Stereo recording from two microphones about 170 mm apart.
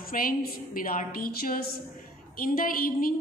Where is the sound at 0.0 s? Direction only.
55° left (ahead or behind).